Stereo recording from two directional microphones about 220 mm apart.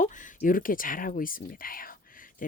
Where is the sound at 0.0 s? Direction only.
35° left (ahead or behind).